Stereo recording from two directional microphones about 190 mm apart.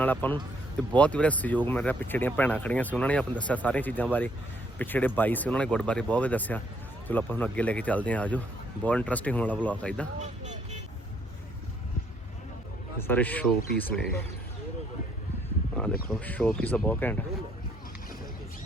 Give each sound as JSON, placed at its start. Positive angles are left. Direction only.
{"t": 0.0, "sound": "speech", "side_deg": 10}
{"t": 10.2, "sound": "speech", "side_deg": -40}
{"t": 13.0, "sound": "speech", "side_deg": 10}
{"t": 15.7, "sound": "speech", "side_deg": 5}